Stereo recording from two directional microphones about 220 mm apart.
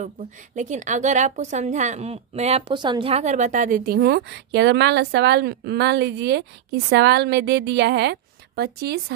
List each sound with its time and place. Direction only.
0.6 s a woman's voice: 35° right (ahead or behind)